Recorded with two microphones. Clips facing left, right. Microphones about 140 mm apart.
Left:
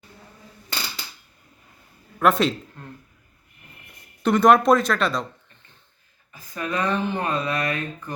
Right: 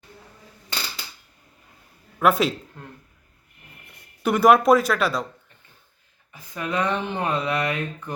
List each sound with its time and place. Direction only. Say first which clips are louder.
2.1 s speech: even; 5° right (ahead or behind)
4.2 s speech: even; 5° right (ahead or behind)
6.3 s speech: right 1 dB; 20° right (ahead or behind)